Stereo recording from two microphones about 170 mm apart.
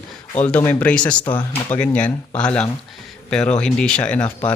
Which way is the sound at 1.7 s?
5° left (ahead or behind).